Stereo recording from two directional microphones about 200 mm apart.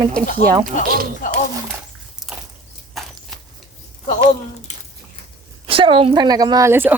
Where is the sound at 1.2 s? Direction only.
45° left (ahead or behind).